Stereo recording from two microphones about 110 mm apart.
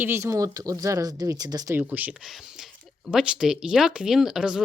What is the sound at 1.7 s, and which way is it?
Speech, 15° right (ahead or behind).